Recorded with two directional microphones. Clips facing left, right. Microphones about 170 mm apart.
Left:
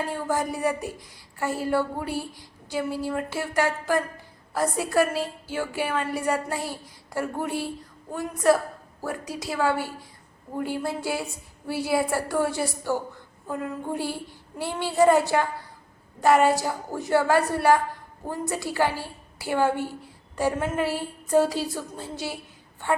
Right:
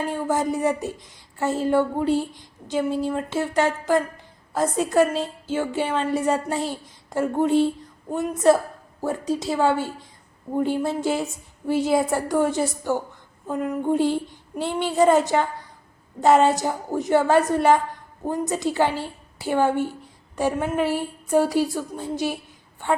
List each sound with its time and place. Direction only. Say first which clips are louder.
0.1 s a woman's voice: right 4 dB; 20° right (ahead or behind)